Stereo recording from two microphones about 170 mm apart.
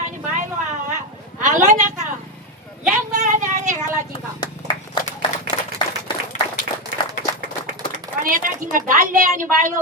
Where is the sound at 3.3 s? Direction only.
45° right (ahead or behind).